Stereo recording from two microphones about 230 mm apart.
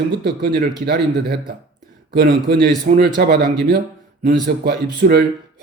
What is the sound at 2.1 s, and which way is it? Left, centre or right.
A man's voice, right.